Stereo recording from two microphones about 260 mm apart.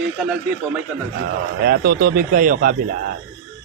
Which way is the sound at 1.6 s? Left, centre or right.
Right.